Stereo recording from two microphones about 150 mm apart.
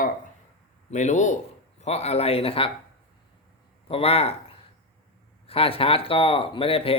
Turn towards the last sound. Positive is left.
turn(degrees=40)  # may be behind; listen again after turning